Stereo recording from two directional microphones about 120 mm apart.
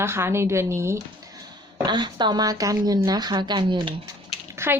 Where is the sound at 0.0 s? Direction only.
20° right (ahead or behind).